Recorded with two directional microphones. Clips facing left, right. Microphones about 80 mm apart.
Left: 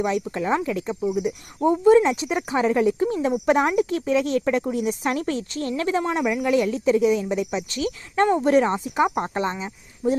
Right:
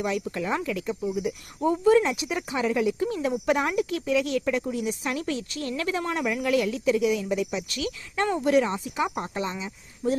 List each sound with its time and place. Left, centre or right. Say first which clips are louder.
0.0 s speech: left 4 dB; left
10.0 s speech: left 4 dB; centre